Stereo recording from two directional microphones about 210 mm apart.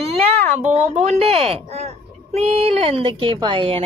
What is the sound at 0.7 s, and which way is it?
Speech, 35° right (ahead or behind).